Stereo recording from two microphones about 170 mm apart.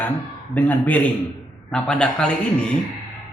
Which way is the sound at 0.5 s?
10° left (ahead or behind).